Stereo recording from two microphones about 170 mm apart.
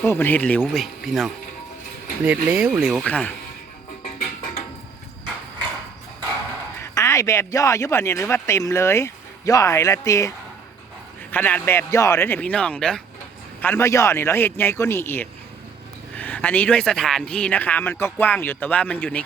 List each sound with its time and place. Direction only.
0.0 s speech: 15° left (ahead or behind)
6.7 s a man's voice: 15° left (ahead or behind)